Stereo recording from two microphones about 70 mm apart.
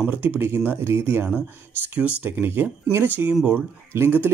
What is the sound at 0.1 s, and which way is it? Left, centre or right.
A man's voice, right.